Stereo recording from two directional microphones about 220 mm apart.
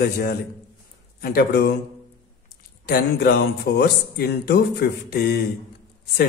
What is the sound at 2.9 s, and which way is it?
Speech, 45° left (ahead or behind).